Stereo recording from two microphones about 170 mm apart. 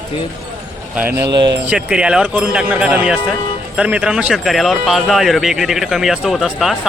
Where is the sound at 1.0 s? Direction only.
75° right (ahead or behind).